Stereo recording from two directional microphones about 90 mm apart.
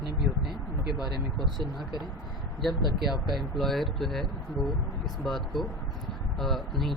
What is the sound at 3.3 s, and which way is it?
Speech, centre (ahead or behind).